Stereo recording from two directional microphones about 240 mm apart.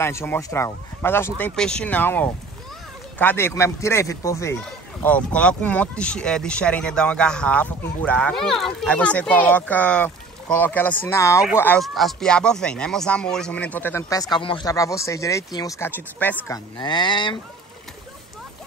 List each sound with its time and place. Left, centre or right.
0.0 s speech: centre